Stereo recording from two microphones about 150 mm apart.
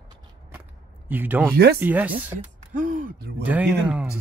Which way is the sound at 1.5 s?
90° right.